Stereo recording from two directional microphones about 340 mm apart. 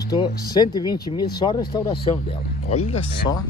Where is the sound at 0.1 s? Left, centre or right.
Centre.